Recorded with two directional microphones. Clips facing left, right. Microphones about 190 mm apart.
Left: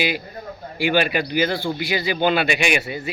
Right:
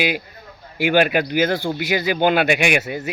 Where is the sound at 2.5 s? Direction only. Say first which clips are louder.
Right 3 dB; 55° right (ahead or behind).